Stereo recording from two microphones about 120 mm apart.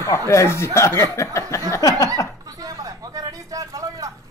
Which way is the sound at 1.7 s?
30° left (ahead or behind).